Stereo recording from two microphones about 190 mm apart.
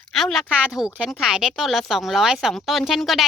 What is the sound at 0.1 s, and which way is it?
Speech, centre (ahead or behind).